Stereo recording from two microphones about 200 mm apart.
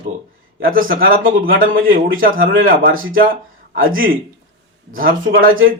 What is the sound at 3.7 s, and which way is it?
Speech, 85° right.